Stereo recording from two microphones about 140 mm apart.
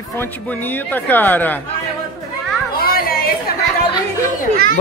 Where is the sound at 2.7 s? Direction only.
90° left.